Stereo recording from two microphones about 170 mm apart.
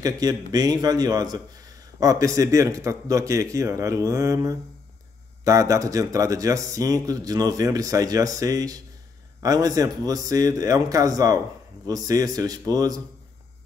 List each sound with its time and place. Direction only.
0.0 s speech: 20° right (ahead or behind)